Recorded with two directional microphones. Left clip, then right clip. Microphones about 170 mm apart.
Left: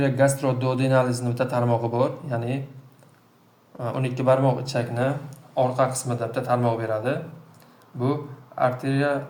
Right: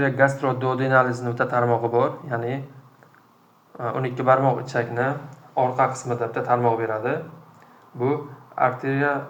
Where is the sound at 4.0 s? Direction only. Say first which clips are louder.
Right 2 dB; 90° left.